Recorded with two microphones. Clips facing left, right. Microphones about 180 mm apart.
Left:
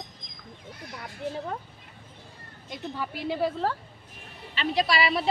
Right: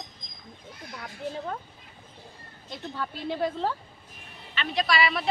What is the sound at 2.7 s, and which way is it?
Speech, 10° left (ahead or behind).